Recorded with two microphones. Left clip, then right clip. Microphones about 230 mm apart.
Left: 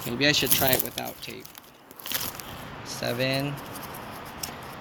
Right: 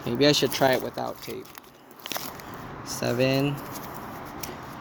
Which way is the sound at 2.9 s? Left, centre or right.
Right.